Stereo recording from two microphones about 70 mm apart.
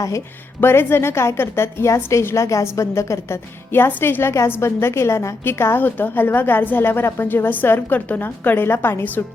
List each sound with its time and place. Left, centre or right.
0.6 s a woman's voice: left
3.7 s a woman's voice: left